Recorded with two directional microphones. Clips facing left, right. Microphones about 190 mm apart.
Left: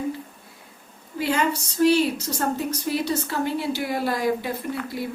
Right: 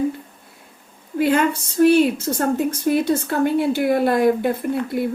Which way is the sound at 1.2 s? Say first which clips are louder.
Right 6 dB; 55° right (ahead or behind).